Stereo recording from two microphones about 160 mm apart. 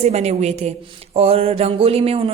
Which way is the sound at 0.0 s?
40° right (ahead or behind).